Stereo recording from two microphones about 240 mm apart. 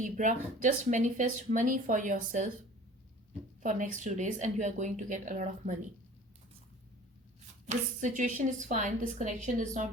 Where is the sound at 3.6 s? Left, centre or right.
Right.